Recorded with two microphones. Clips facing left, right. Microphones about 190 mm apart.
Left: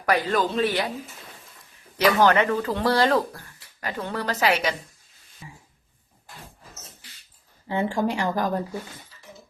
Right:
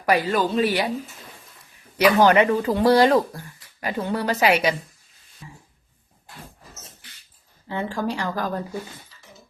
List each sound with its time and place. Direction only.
0.0 s speech: 10° right (ahead or behind)
2.0 s speech: 10° right (ahead or behind)
5.4 s a sound: 10° left (ahead or behind)
7.7 s speech: 20° left (ahead or behind)